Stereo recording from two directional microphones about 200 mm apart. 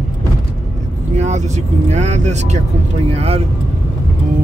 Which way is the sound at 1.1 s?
35° right (ahead or behind).